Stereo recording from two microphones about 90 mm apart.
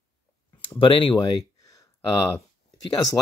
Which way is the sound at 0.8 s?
80° left.